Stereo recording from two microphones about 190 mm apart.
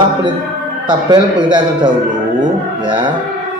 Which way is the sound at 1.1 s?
25° right (ahead or behind).